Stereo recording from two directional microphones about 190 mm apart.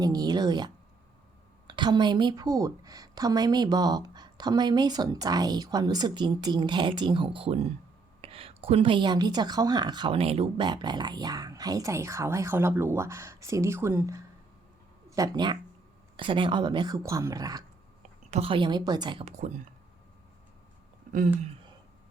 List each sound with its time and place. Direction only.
0.0 s a woman's voice: 20° right (ahead or behind)
18.3 s a woman's voice: 30° right (ahead or behind)